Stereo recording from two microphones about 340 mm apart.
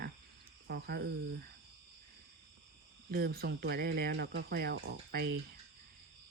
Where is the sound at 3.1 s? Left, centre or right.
Right.